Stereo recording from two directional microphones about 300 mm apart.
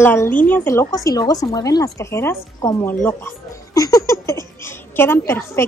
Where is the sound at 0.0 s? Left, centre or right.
Centre.